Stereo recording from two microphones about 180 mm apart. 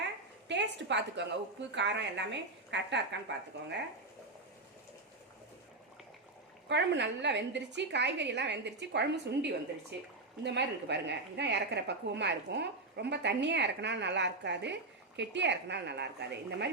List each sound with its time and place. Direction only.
0.4 s a sound: 80° right
1.7 s a woman's voice: 75° right (ahead or behind)
6.7 s a woman's voice: 75° right (ahead or behind)